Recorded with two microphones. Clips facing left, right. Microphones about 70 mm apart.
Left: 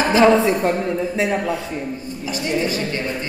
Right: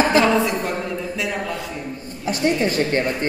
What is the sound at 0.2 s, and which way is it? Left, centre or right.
A woman's voice, left.